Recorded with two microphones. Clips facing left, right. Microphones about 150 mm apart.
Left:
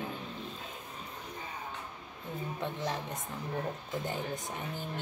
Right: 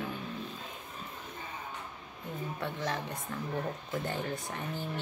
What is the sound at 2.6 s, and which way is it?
Speech, 20° left (ahead or behind).